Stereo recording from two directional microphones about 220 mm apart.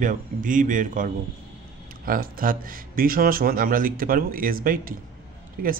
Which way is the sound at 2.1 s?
40° right (ahead or behind).